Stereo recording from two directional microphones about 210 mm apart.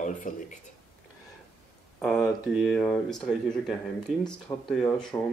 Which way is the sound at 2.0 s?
Centre (ahead or behind).